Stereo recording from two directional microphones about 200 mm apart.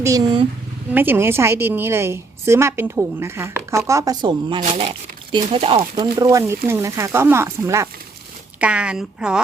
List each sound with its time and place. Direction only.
0.0 s a woman's voice: 15° right (ahead or behind)
6.0 s a woman's voice: 15° right (ahead or behind)